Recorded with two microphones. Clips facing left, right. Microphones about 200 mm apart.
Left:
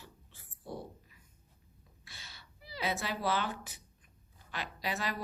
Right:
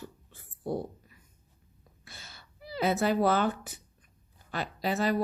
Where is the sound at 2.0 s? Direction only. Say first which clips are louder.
Right 4 dB; 50° right (ahead or behind).